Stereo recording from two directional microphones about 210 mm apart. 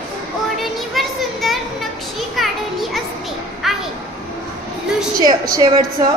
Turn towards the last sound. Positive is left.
turn(degrees=-20)  # may be behind; listen again after turning